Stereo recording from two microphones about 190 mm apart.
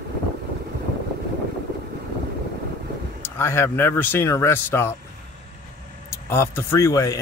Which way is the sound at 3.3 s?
15° left (ahead or behind).